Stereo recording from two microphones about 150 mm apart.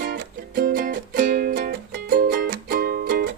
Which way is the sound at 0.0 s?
80° right.